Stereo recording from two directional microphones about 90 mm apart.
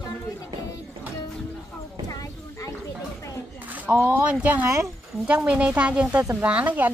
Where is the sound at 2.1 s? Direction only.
40° left (ahead or behind).